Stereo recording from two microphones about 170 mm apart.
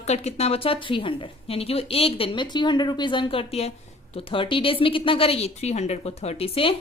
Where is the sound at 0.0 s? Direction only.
40° left (ahead or behind).